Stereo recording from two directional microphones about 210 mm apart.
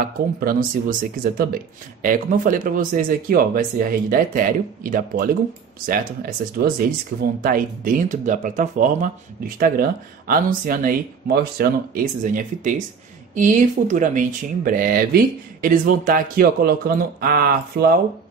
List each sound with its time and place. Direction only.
0.0 s speech: 45° right (ahead or behind)